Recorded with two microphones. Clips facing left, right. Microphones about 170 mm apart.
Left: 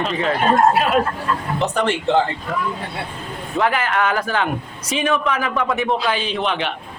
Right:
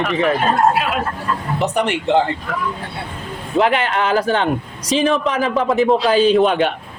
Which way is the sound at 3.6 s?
30° right (ahead or behind).